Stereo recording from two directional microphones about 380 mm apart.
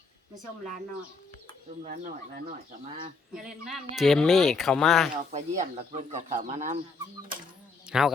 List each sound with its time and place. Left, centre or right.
1.8 s speech: right
3.3 s speech: centre
5.3 s speech: centre
7.9 s speech: centre